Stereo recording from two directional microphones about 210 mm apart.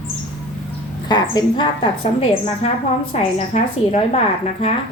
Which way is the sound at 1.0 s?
20° left (ahead or behind).